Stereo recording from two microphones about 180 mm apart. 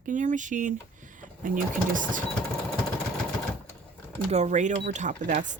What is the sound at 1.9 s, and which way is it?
Speech, 45° right (ahead or behind).